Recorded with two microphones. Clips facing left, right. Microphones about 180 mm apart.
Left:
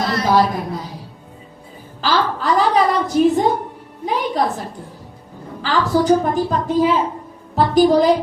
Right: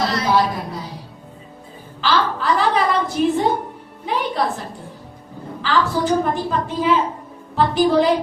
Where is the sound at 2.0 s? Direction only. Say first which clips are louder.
Left 1 dB; 40° left (ahead or behind).